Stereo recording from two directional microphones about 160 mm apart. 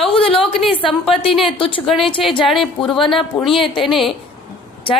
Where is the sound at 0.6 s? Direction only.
35° left (ahead or behind).